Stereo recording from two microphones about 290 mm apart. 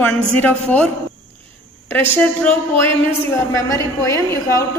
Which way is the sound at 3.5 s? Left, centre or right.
Centre.